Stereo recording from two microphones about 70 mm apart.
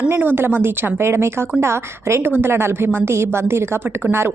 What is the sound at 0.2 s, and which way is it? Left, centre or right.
A woman's voice, right.